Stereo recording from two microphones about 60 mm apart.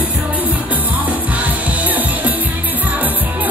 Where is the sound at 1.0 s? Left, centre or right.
Right.